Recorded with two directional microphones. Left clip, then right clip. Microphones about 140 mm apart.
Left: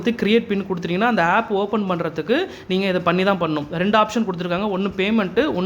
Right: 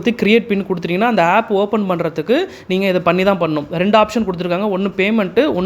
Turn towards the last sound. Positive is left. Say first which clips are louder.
# right 5 dB
turn(degrees=-40)  # may be behind; listen again after turning